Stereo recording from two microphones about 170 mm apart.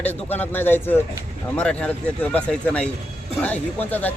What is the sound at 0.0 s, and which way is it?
A man's voice, 10° left (ahead or behind).